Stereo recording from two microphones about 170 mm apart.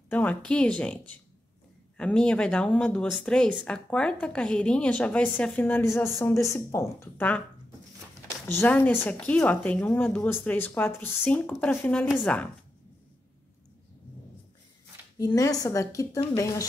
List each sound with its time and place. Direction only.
0.1 s a woman's voice: 10° left (ahead or behind)
8.5 s a woman's voice: 10° left (ahead or behind)
15.1 s a woman's voice: 20° left (ahead or behind)